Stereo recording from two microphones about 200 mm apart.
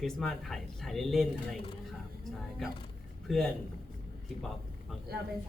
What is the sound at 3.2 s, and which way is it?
Speech, centre (ahead or behind).